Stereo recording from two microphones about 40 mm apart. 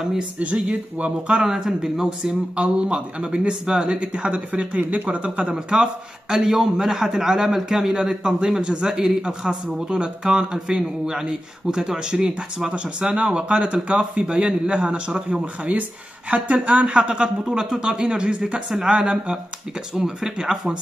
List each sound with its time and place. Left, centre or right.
0.4 s speech: right
1.4 s speech: centre
5.5 s a man's voice: centre
7.9 s speech: right
16.3 s a man's voice: right; by 20.5 s centre